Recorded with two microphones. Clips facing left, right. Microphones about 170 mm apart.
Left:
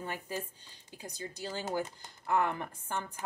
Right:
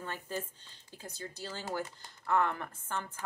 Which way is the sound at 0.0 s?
10° left (ahead or behind).